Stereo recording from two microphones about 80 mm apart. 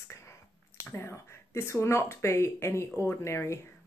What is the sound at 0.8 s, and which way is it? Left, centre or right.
Speech, left.